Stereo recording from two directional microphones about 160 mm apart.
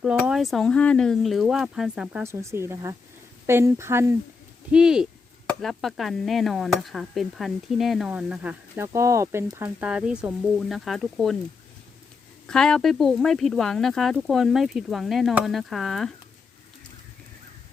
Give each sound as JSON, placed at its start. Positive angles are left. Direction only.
{"t": 0.0, "sound": "speech", "side_deg": -5}
{"t": 2.2, "sound": "speech", "side_deg": -15}
{"t": 4.7, "sound": "speech", "side_deg": -5}
{"t": 9.8, "sound": "speech", "side_deg": -5}
{"t": 12.5, "sound": "speech", "side_deg": 5}